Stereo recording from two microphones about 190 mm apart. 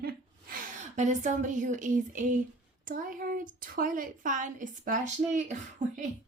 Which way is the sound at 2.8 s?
45° right (ahead or behind).